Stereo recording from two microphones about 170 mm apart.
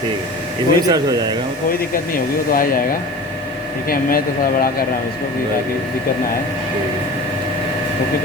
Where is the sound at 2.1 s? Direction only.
55° left (ahead or behind).